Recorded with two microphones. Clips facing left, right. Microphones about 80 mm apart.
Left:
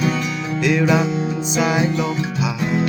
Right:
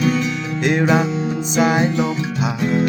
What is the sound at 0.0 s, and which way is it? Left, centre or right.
Music, centre.